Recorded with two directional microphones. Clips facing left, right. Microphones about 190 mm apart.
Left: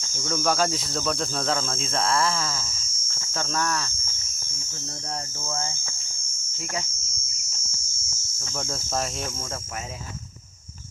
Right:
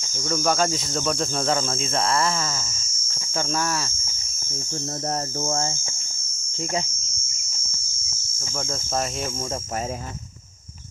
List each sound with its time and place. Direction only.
0.3 s cricket: centre (ahead or behind)
3.1 s speech: 10° right (ahead or behind)
5.5 s mains hum: 45° right (ahead or behind)
8.5 s cricket: centre (ahead or behind)